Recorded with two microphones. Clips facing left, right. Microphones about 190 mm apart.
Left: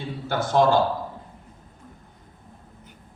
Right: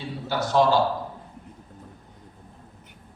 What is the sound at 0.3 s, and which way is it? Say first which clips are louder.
Speech: left 1 dB; 50° left (ahead or behind).